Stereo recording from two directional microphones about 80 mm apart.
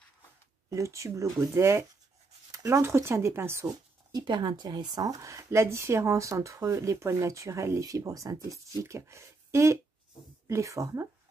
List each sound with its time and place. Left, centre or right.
0.7 s speech: right
2.5 s a sound: right
2.8 s speech: right
4.1 s speech: right